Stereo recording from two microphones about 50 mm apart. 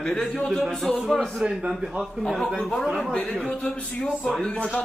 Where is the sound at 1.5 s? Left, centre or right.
Centre.